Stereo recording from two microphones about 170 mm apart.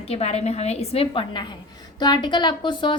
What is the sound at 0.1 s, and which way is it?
A woman's voice, 35° left (ahead or behind).